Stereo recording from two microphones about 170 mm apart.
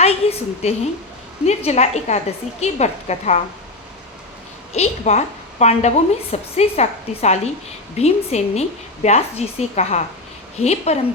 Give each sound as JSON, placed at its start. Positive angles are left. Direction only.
{"t": 0.0, "sound": "a woman's voice", "side_deg": 40}
{"t": 4.7, "sound": "a woman's voice", "side_deg": 40}